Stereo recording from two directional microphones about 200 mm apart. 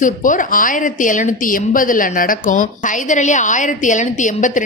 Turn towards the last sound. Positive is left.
turn(degrees=40)  # may be behind; listen again after turning